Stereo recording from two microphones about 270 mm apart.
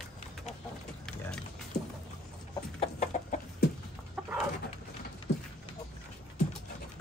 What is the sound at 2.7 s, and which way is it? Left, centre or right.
Chicken, left.